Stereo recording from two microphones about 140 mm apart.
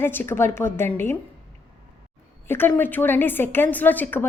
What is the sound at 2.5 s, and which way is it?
A woman's voice, 15° left (ahead or behind).